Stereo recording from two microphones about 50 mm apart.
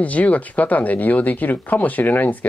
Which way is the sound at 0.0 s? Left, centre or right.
Left.